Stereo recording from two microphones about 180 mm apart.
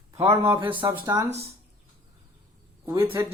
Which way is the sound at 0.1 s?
15° right (ahead or behind).